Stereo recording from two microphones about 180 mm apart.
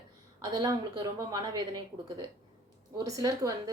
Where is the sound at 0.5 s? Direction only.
20° right (ahead or behind).